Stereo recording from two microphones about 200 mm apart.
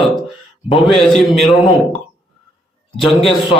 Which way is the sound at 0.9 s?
Centre (ahead or behind).